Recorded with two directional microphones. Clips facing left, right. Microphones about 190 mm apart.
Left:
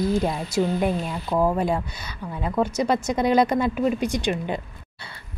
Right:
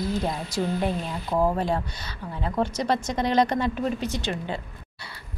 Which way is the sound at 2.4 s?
10° left (ahead or behind).